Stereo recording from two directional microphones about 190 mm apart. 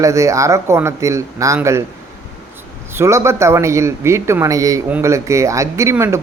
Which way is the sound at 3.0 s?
15° right (ahead or behind).